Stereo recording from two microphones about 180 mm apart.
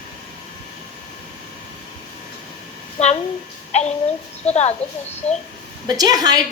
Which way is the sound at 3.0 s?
35° left (ahead or behind).